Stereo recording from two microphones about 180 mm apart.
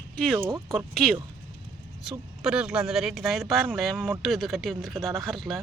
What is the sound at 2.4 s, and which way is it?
A woman's voice, 5° right (ahead or behind).